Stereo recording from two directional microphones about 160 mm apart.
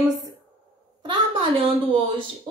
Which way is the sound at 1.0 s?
35° right (ahead or behind).